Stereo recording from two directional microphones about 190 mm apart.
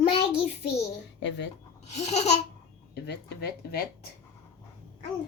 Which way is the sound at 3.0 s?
60° left (ahead or behind).